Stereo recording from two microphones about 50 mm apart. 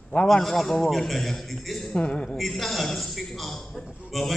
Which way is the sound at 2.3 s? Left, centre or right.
Centre.